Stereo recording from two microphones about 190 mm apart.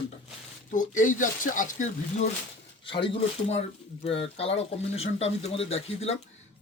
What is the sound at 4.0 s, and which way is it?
Speech, 30° left (ahead or behind).